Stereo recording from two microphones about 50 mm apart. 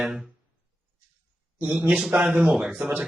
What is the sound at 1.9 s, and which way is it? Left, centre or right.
Speech, centre.